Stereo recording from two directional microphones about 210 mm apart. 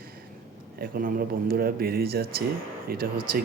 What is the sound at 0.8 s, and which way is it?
Speech, 45° right (ahead or behind).